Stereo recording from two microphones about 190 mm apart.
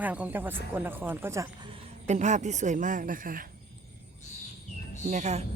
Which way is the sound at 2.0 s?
40° right (ahead or behind).